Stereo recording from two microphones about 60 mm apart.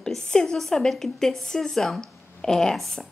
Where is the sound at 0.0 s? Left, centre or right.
Centre.